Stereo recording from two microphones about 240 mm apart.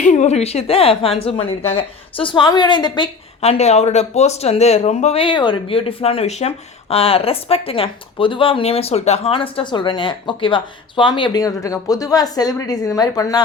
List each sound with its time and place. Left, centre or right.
0.0 s speech: left